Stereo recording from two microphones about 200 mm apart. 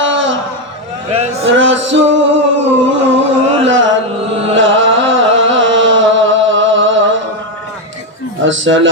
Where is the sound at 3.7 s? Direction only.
65° right (ahead or behind).